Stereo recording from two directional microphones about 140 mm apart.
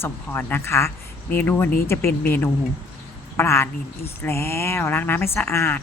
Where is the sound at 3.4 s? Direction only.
20° left (ahead or behind).